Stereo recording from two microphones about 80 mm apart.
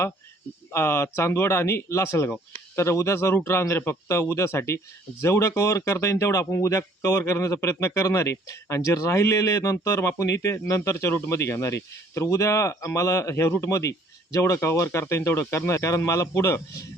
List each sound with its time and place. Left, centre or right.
0.7 s speech: left